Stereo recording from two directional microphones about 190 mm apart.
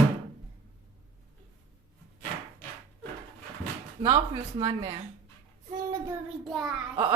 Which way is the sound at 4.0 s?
25° right (ahead or behind).